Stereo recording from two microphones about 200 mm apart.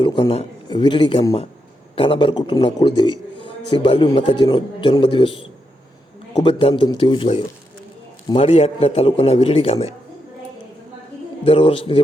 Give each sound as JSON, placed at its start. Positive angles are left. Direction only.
{"t": 0.0, "sound": "a man's voice", "side_deg": 25}
{"t": 6.4, "sound": "a man's voice", "side_deg": 25}
{"t": 11.4, "sound": "a man's voice", "side_deg": 30}